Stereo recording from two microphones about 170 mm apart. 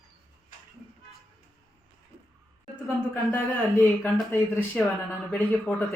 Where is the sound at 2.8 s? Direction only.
10° left (ahead or behind).